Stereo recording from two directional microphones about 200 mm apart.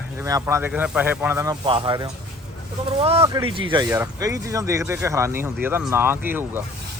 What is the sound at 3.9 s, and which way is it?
Speech, 15° right (ahead or behind).